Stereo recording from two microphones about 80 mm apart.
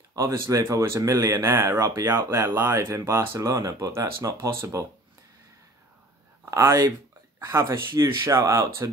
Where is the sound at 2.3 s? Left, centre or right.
Right.